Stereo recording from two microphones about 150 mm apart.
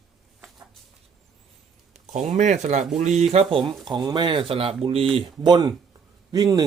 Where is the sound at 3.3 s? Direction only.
35° right (ahead or behind).